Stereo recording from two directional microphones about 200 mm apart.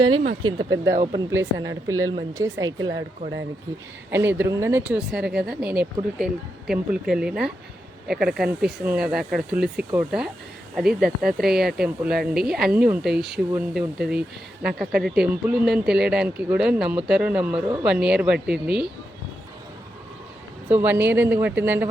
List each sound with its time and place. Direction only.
0.4 s speech: 20° right (ahead or behind)
0.9 s speech: 30° right (ahead or behind)
1.3 s speech: 15° right (ahead or behind)
4.1 s speech: 10° right (ahead or behind)
20.7 s speech: 10° right (ahead or behind)